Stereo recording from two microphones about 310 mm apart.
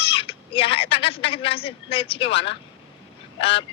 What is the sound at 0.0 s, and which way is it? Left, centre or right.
Speech, centre.